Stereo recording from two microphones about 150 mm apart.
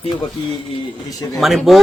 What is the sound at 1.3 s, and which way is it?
Speech, centre (ahead or behind).